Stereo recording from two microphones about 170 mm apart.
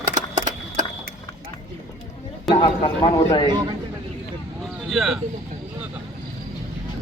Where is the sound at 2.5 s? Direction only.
25° left (ahead or behind).